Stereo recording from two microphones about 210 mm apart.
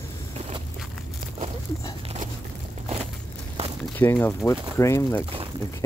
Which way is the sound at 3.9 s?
10° left (ahead or behind).